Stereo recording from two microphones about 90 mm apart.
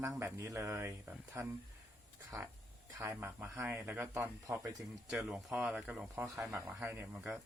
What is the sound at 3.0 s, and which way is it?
Speech, 30° right (ahead or behind).